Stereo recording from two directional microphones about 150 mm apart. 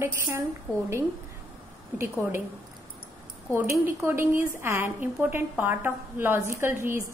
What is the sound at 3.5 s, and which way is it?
A woman's voice, 15° right (ahead or behind).